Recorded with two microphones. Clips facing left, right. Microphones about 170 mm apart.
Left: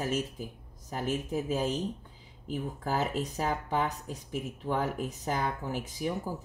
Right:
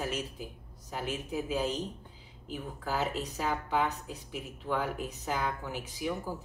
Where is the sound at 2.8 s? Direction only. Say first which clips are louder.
Left 1 dB; 45° left (ahead or behind).